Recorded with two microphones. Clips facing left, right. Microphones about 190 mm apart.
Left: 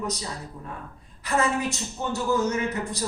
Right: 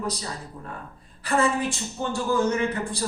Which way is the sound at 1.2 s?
30° right (ahead or behind).